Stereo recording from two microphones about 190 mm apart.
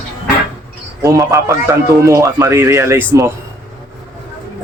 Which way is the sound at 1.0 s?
15° right (ahead or behind).